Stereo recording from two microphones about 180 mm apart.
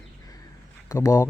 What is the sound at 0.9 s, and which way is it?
Speech, 20° left (ahead or behind).